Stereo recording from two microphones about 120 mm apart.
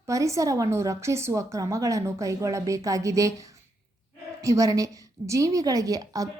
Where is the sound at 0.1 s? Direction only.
25° right (ahead or behind).